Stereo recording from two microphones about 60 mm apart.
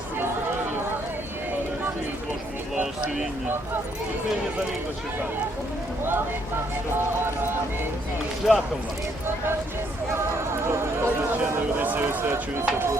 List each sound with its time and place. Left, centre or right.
8.4 s speech: centre
10.5 s a sound: right
11.8 s speech: right